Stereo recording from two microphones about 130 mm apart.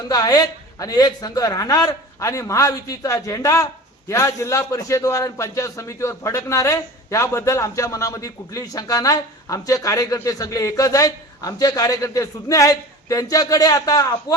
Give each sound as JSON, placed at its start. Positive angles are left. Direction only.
{"t": 0.1, "sound": "a man's voice", "side_deg": 30}